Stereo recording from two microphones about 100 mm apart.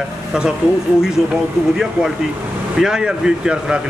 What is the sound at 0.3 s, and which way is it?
Speech, 10° right (ahead or behind).